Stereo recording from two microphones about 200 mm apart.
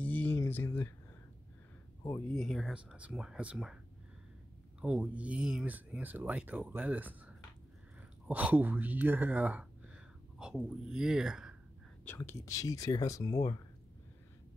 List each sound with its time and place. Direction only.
0.0 s a sound: 10° left (ahead or behind)
2.3 s speech: centre (ahead or behind)
4.8 s speech: 5° right (ahead or behind)
12.0 s speech: 10° left (ahead or behind)